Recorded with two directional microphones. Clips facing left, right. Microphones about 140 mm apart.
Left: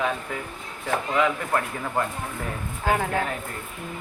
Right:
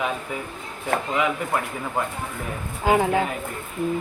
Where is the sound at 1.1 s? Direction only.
10° right (ahead or behind).